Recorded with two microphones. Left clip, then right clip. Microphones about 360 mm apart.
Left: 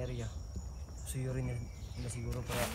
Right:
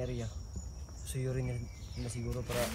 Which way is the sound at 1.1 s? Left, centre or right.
Centre.